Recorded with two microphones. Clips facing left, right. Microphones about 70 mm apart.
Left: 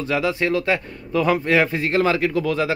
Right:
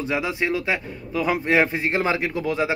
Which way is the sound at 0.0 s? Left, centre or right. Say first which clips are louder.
Left 3 dB; centre.